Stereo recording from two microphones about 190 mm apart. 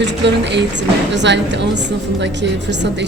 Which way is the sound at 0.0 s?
65° right (ahead or behind).